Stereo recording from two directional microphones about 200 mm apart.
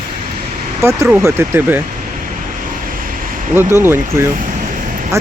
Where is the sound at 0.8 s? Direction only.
15° right (ahead or behind).